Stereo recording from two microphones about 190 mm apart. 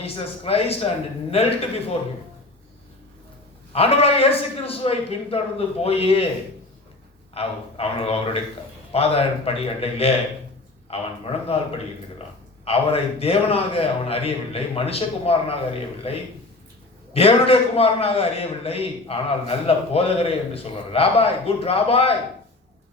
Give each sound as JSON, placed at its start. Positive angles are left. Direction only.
{"t": 0.0, "sound": "a man's voice", "side_deg": 30}
{"t": 3.7, "sound": "a man's voice", "side_deg": 30}
{"t": 7.3, "sound": "a man's voice", "side_deg": 30}
{"t": 12.6, "sound": "a man's voice", "side_deg": 30}